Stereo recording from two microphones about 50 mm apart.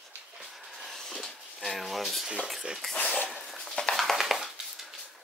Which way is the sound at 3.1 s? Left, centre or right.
Centre.